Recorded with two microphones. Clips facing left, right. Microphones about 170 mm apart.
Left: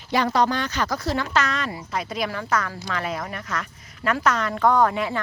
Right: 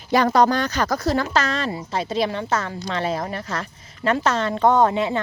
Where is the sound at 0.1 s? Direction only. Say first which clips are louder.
Right 4 dB; 45° right (ahead or behind).